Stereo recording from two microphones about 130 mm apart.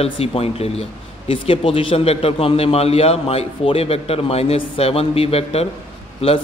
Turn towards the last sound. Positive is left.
turn(degrees=50)  # may be behind; listen again after turning